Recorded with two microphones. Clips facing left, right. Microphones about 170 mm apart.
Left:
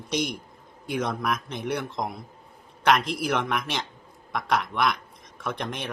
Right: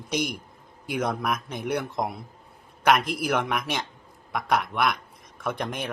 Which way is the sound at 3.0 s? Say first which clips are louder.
Even; 50° right (ahead or behind).